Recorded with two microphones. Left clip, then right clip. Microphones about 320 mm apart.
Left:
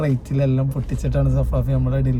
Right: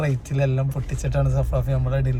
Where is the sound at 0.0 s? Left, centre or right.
Centre.